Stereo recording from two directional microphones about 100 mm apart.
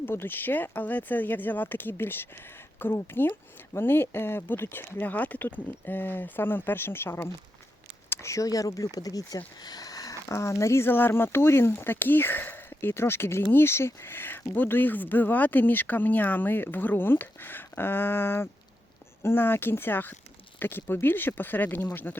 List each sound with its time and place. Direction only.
0.0 s speech: 25° left (ahead or behind)